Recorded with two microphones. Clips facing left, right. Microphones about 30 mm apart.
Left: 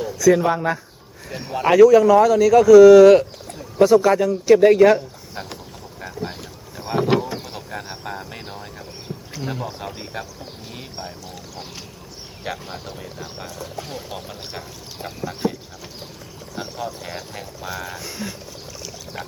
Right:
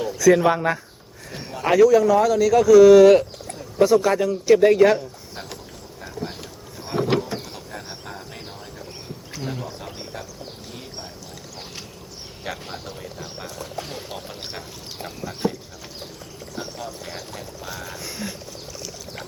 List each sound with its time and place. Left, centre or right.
0.0 s speech: centre
1.3 s speech: centre
6.1 s a sound: centre
6.7 s vehicle: centre
7.5 s speech: left
9.8 s speech: left
10.8 s a sound: left
12.7 s speech: centre
15.0 s speech: centre
16.6 s speech: centre